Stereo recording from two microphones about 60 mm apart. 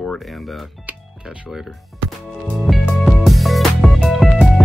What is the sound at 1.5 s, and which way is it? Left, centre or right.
Speech, centre.